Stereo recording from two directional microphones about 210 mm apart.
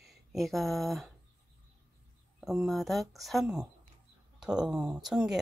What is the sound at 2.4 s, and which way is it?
Speech, centre (ahead or behind).